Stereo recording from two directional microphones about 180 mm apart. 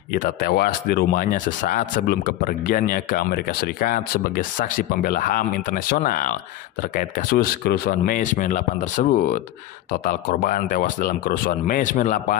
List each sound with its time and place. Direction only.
0.1 s speech: 55° left (ahead or behind)